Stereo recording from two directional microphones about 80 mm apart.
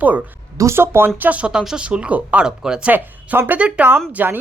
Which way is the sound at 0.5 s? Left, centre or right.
Right.